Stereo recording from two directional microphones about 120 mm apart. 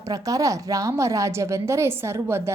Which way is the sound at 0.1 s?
30° right (ahead or behind).